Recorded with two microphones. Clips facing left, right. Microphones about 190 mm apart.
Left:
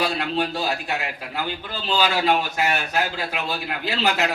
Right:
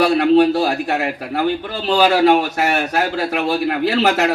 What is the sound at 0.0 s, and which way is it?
Speech, 90° right.